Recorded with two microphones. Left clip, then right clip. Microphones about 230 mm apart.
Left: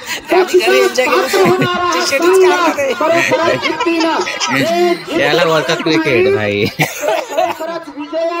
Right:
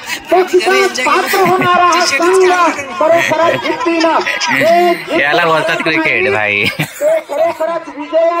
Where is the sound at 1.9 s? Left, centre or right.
Left.